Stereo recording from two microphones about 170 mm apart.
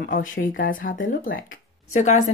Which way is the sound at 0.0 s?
55° left (ahead or behind).